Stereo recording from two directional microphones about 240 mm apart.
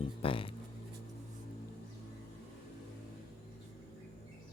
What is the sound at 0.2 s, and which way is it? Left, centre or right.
Speech, left.